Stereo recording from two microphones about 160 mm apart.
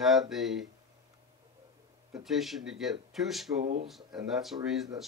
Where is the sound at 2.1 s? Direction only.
Centre (ahead or behind).